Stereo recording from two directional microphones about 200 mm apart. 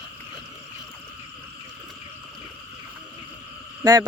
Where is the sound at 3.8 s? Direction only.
20° right (ahead or behind).